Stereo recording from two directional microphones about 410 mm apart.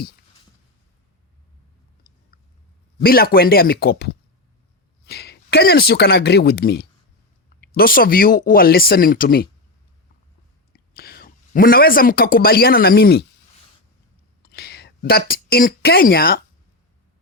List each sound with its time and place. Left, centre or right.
2.3 s chewing: left
3.0 s speech: left
10.7 s speech: left
14.5 s speech: left